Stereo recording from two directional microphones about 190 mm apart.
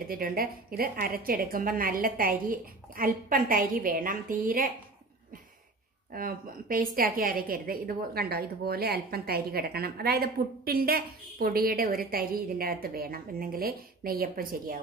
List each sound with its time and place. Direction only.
0.1 s a woman's voice: 50° right (ahead or behind)
6.1 s a woman's voice: 50° right (ahead or behind)